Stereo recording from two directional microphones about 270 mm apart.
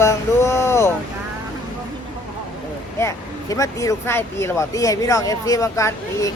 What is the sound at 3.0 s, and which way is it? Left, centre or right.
Speech, centre.